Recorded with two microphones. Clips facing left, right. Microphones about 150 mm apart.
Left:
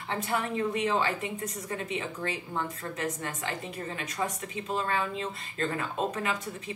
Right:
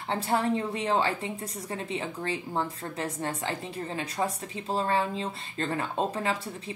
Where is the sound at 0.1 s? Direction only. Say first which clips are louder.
Right 4 dB; 30° right (ahead or behind).